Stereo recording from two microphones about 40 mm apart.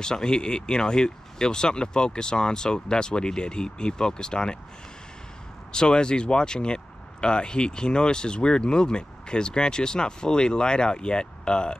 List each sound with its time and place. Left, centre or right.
0.0 s speech: centre
5.7 s speech: left